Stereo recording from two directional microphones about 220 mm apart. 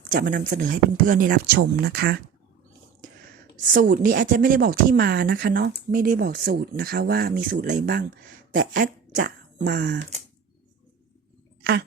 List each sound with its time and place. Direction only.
0.1 s speech: 40° right (ahead or behind)
3.7 s speech: 40° right (ahead or behind)